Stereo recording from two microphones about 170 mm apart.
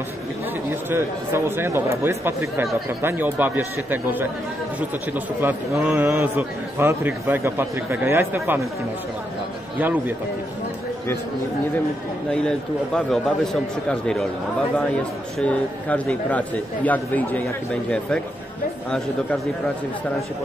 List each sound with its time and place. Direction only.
0.7 s a man's voice: 15° right (ahead or behind)
9.8 s a man's voice: 10° right (ahead or behind)
12.3 s speech: 5° left (ahead or behind)
15.3 s speech: 5° left (ahead or behind)